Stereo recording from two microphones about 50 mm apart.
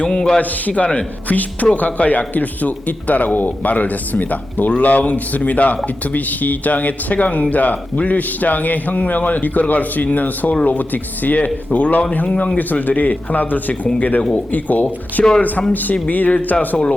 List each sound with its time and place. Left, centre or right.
0.0 s a man's voice: centre
0.3 s a man's voice: left
16.6 s a man's voice: centre